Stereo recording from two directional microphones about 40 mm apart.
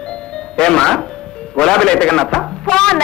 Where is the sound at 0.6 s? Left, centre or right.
Centre.